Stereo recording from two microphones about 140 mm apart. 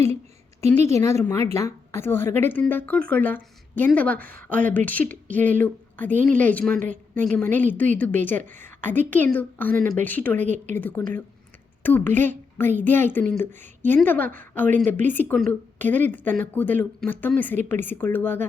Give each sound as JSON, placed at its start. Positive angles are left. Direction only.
{"t": 0.6, "sound": "a woman's voice", "side_deg": 20}
{"t": 6.7, "sound": "a woman's voice", "side_deg": -60}
{"t": 7.1, "sound": "a woman's voice", "side_deg": 10}